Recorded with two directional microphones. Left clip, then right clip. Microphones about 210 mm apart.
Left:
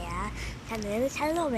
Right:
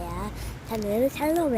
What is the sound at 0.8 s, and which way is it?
Speech, 35° right (ahead or behind).